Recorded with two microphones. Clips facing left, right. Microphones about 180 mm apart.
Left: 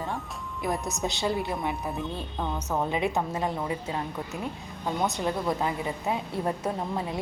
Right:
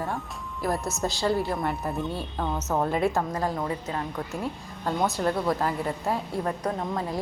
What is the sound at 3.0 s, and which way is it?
Speech, 20° left (ahead or behind).